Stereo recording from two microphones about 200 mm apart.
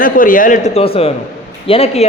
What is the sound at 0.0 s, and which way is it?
A man's voice, 45° left (ahead or behind).